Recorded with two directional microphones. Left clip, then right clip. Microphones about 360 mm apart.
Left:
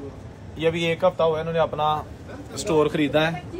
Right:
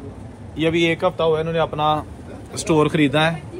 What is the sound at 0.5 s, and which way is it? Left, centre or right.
A man's voice, centre.